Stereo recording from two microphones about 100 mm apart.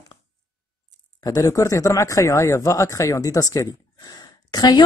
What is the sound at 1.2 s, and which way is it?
Speech, 35° left (ahead or behind).